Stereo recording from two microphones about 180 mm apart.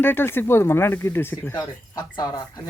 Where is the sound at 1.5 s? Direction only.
25° left (ahead or behind).